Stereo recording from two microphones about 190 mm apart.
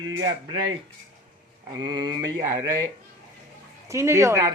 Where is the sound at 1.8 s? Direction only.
25° right (ahead or behind).